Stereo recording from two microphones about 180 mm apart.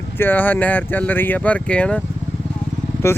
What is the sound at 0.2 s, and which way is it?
Speech, 10° left (ahead or behind).